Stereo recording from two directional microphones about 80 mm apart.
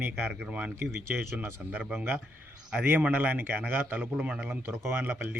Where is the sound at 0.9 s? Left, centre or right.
Right.